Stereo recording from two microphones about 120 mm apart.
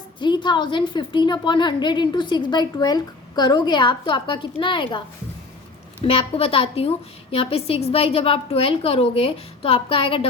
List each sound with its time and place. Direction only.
0.2 s a woman's voice: 40° left (ahead or behind)
6.1 s a woman's voice: 50° left (ahead or behind)